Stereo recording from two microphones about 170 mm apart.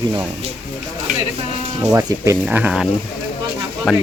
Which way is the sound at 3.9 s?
Centre (ahead or behind).